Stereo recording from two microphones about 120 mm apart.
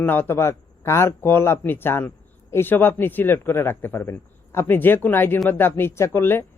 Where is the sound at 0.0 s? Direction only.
15° left (ahead or behind).